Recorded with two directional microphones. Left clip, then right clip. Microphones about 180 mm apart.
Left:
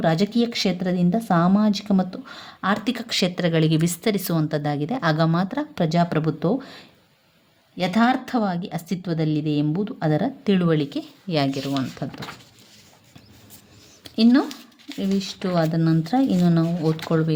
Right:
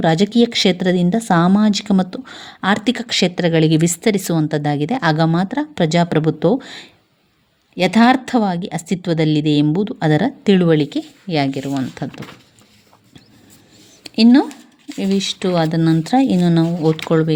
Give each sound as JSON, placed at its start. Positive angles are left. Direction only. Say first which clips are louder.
{"t": 0.0, "sound": "speech", "louder": "right 6 dB", "side_deg": -25}
{"t": 14.0, "sound": "a sound", "louder": "right 6 dB", "side_deg": -25}
{"t": 14.9, "sound": "speech", "louder": "right 7 dB", "side_deg": -25}